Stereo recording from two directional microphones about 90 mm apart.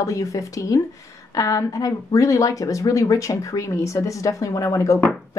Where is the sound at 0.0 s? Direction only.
40° left (ahead or behind).